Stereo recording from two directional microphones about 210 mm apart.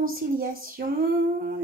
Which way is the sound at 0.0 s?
45° right (ahead or behind).